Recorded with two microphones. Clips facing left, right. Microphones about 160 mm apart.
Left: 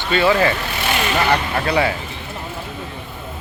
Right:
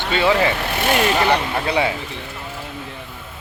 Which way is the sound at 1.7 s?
20° right (ahead or behind).